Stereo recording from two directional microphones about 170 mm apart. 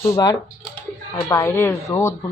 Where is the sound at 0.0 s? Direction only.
20° left (ahead or behind).